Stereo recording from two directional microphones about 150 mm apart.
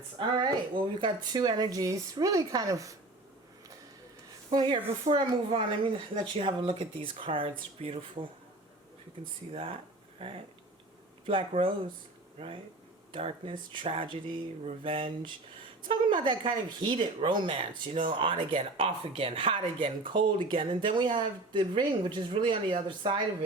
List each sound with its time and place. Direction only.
0.2 s speech: 30° right (ahead or behind)
4.5 s speech: 30° right (ahead or behind)
9.5 s speech: 40° right (ahead or behind)
13.1 s speech: 35° right (ahead or behind)